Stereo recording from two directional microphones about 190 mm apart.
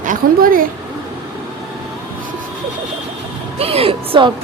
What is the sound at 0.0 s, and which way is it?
Speech, 45° right (ahead or behind).